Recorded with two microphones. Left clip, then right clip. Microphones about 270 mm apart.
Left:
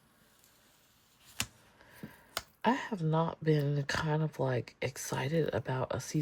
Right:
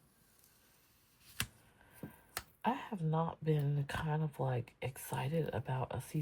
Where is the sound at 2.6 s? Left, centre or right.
Centre.